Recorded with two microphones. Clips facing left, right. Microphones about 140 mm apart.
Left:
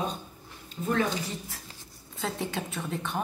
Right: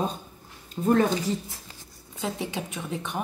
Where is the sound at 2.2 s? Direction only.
15° right (ahead or behind).